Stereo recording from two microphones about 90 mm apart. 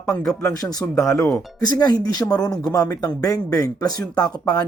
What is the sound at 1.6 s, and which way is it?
Speech, 50° left (ahead or behind).